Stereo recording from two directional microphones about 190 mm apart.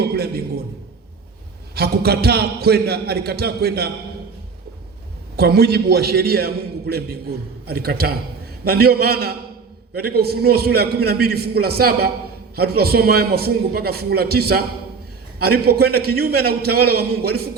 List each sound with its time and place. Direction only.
0.0 s a sound: 55° right (ahead or behind)
1.7 s a man's voice: 55° right (ahead or behind)
5.4 s a man's voice: 55° right (ahead or behind)